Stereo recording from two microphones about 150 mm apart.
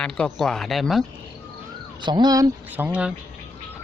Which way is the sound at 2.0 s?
30° right (ahead or behind).